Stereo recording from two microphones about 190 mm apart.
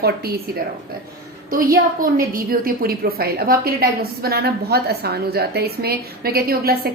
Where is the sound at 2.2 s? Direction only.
50° right (ahead or behind).